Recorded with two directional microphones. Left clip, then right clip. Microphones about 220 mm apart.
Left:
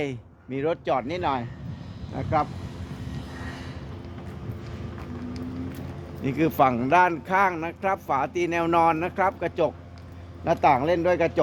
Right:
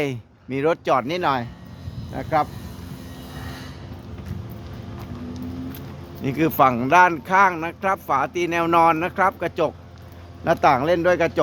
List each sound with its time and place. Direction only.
0.0 s speech: 25° right (ahead or behind)
2.1 s speech: 10° right (ahead or behind)
6.2 s speech: 20° right (ahead or behind)